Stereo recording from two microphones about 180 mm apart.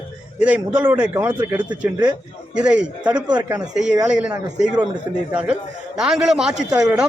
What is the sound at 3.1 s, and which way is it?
Speech, 25° right (ahead or behind).